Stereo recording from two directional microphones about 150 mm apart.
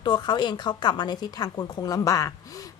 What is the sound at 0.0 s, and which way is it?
Speech, 30° left (ahead or behind).